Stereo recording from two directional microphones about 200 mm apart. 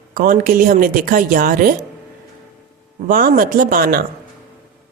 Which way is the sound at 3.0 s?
45° right (ahead or behind).